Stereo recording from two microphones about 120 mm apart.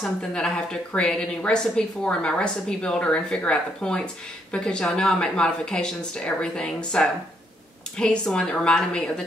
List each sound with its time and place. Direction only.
0.0 s a woman's voice: 5° left (ahead or behind)